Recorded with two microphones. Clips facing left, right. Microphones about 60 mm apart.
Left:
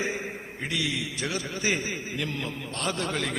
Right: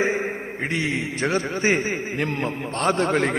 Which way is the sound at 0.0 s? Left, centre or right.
Right.